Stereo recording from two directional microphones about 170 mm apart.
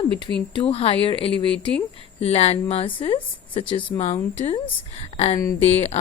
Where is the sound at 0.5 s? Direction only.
35° left (ahead or behind).